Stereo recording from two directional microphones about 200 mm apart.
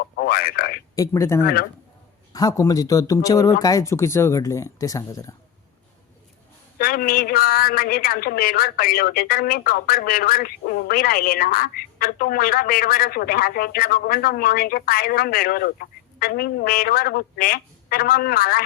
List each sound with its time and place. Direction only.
0.2 s speech: 45° left (ahead or behind)
0.9 s speech: 15° left (ahead or behind)
6.7 s a woman's voice: 45° left (ahead or behind)